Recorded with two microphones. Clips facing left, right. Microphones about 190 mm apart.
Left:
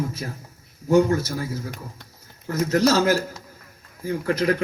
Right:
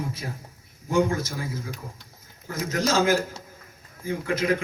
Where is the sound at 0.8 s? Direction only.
40° left (ahead or behind).